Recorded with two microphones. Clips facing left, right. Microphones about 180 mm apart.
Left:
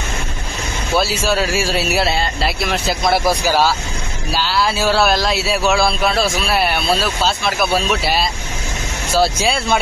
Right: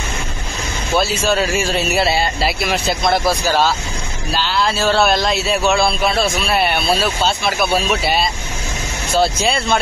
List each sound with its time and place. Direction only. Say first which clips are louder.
0.9 s speech: right 1 dB; 5° left (ahead or behind)